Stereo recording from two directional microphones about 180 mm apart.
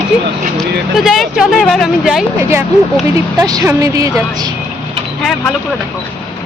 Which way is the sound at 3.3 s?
20° right (ahead or behind).